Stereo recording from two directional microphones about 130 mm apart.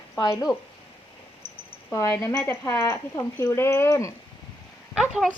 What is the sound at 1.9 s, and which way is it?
Speech, 20° left (ahead or behind).